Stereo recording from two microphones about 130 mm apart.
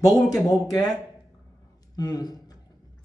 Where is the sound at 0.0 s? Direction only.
25° left (ahead or behind).